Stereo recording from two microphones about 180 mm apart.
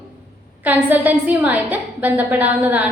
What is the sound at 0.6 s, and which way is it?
A woman's voice, 10° right (ahead or behind).